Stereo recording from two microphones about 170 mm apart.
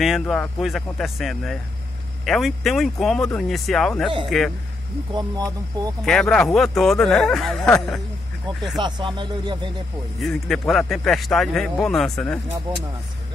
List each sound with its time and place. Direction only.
0.0 s speech: centre (ahead or behind)
5.1 s speech: 25° right (ahead or behind)
6.0 s speech: 5° left (ahead or behind)
8.7 s speech: 25° right (ahead or behind)
10.2 s speech: centre (ahead or behind)